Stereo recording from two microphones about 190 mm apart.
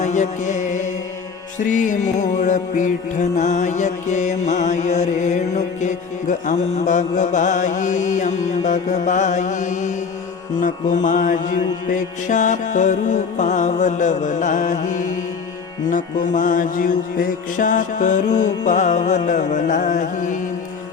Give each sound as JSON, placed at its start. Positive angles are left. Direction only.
{"t": 0.0, "sound": "music", "side_deg": 40}
{"t": 10.6, "sound": "mantra", "side_deg": 40}